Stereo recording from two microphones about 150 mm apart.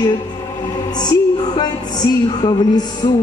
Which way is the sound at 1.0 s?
30° left (ahead or behind).